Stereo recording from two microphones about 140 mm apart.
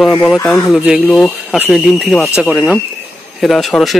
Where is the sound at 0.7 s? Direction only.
5° right (ahead or behind).